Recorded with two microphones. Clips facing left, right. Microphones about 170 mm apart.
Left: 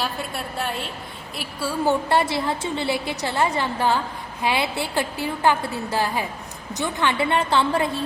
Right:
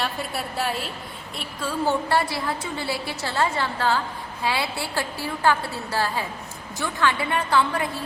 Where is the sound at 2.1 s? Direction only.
20° left (ahead or behind).